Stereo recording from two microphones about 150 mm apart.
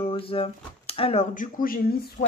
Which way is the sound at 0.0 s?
35° left (ahead or behind).